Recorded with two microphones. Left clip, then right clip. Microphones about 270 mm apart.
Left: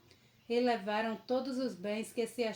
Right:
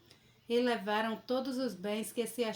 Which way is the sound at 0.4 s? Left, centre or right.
Right.